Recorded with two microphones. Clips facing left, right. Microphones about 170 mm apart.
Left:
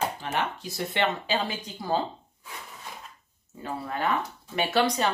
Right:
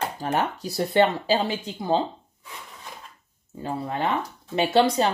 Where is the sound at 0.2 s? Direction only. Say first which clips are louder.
Right 5 dB; 40° right (ahead or behind); by 2.0 s 20° right (ahead or behind).